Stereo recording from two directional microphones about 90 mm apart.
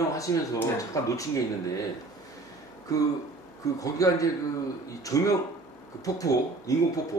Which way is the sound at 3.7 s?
40° left (ahead or behind).